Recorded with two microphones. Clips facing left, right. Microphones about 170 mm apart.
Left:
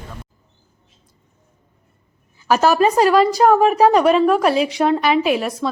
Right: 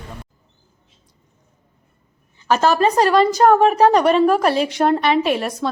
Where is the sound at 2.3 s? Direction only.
10° left (ahead or behind).